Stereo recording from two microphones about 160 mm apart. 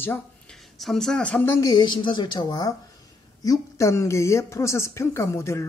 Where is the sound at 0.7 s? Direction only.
Centre (ahead or behind).